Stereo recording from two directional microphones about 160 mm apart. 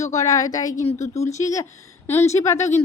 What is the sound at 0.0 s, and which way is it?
Speech, 20° left (ahead or behind).